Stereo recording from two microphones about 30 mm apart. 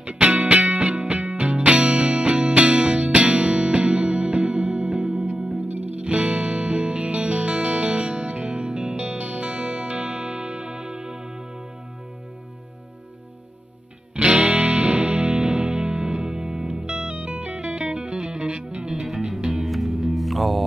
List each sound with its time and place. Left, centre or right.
0.0 s music: right
5.6 s music: right
14.1 s music: right
18.9 s music: centre